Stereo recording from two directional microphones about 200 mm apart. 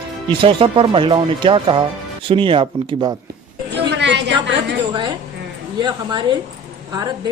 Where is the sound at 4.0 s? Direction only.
60° right (ahead or behind).